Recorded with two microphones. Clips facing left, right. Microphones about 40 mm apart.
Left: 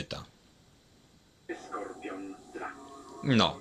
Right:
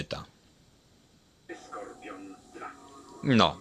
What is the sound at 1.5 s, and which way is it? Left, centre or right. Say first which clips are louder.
Television: left 2 dB; left.